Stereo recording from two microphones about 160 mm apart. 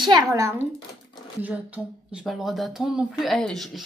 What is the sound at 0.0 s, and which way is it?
Speech, 25° right (ahead or behind).